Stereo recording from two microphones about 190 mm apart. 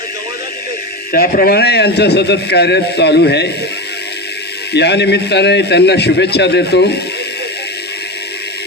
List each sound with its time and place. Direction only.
1.1 s a man's voice: 55° left (ahead or behind)
4.7 s a man's voice: 60° left (ahead or behind)